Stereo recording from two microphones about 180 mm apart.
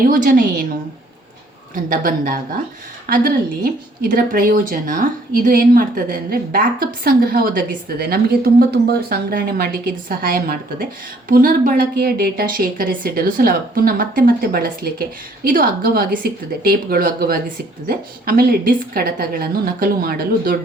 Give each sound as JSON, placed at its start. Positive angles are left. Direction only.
{"t": 0.0, "sound": "speech", "side_deg": -50}
{"t": 1.7, "sound": "a woman's voice", "side_deg": -50}